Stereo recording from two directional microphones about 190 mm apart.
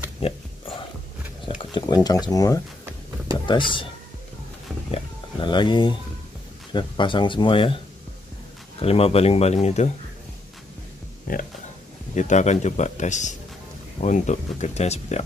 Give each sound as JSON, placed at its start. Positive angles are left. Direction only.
{"t": 0.2, "sound": "pig", "side_deg": 30}
{"t": 1.4, "sound": "a sound", "side_deg": 25}
{"t": 2.2, "sound": "speech", "side_deg": 20}
{"t": 4.9, "sound": "speech", "side_deg": 25}
{"t": 8.8, "sound": "speech", "side_deg": 30}
{"t": 11.3, "sound": "a sound", "side_deg": 50}
{"t": 12.2, "sound": "speech", "side_deg": 40}